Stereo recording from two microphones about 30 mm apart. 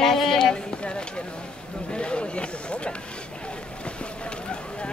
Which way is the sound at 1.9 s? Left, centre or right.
Left.